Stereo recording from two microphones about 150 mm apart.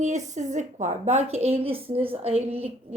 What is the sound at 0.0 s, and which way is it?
A woman's voice, 50° right (ahead or behind).